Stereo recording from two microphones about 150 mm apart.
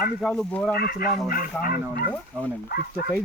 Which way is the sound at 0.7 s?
90° left.